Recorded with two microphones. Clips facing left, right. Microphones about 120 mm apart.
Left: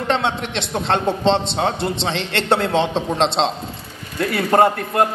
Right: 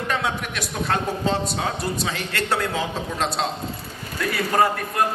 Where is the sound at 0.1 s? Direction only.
25° left (ahead or behind).